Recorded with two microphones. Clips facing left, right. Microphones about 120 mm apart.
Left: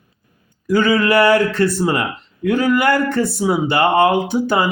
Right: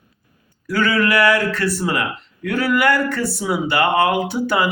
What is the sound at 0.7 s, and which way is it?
Speech, 20° left (ahead or behind).